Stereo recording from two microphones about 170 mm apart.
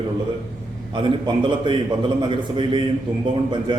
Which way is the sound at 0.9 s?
30° right (ahead or behind).